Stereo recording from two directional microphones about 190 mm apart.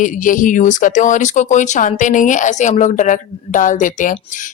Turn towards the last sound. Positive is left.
turn(degrees=45)  # may be behind; listen again after turning